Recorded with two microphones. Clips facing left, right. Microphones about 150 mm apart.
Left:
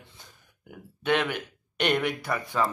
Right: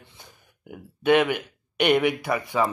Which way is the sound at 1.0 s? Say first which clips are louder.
Right 6 dB; 10° right (ahead or behind).